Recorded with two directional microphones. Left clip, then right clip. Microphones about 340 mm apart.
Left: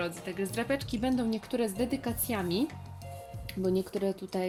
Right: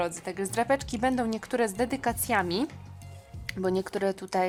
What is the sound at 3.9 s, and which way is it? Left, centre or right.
Speech, right.